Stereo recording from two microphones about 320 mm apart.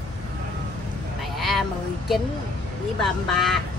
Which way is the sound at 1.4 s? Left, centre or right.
Centre.